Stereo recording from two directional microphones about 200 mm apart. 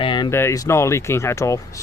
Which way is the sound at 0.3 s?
10° left (ahead or behind).